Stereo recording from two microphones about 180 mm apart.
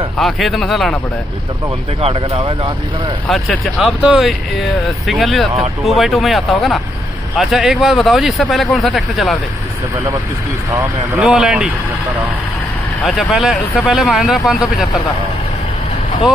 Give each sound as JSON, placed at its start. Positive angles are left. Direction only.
{"t": 0.2, "sound": "speech", "side_deg": 0}
{"t": 2.0, "sound": "speech", "side_deg": -35}
{"t": 3.3, "sound": "speech", "side_deg": 5}
{"t": 11.1, "sound": "speech", "side_deg": -5}
{"t": 13.0, "sound": "speech", "side_deg": 0}